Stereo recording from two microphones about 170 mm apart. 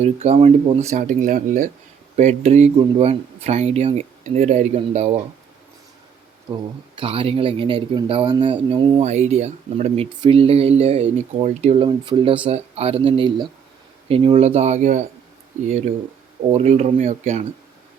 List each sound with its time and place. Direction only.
0.0 s speech: 40° right (ahead or behind)
0.9 s speech: 45° right (ahead or behind)
6.9 s speech: 30° right (ahead or behind)
9.0 s speech: 45° right (ahead or behind)
16.5 s speech: 40° right (ahead or behind)